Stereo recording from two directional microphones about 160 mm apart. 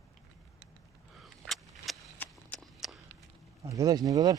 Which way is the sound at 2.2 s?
10° left (ahead or behind).